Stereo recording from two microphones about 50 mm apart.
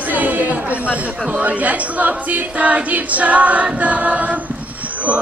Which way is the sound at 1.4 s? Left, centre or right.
Right.